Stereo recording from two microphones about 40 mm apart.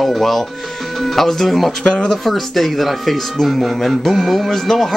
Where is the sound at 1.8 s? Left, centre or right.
Left.